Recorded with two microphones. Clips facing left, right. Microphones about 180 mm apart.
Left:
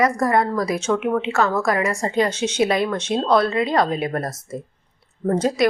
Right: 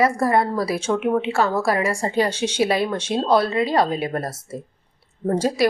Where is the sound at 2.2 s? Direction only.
10° right (ahead or behind).